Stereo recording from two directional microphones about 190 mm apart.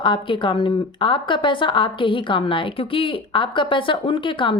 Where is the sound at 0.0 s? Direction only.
25° left (ahead or behind).